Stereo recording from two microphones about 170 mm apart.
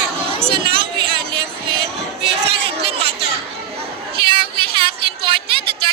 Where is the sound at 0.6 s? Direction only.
30° right (ahead or behind).